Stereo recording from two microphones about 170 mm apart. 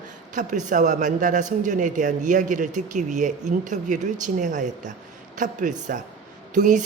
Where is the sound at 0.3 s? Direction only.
45° right (ahead or behind).